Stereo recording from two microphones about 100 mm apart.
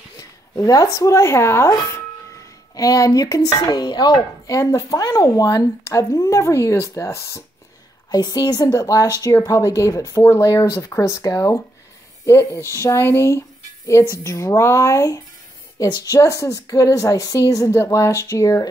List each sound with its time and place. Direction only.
0.2 s speech: 35° left (ahead or behind)
4.6 s speech: 30° left (ahead or behind)
8.1 s speech: 40° left (ahead or behind)